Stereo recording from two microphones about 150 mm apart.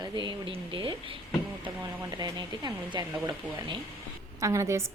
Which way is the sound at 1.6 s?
25° right (ahead or behind).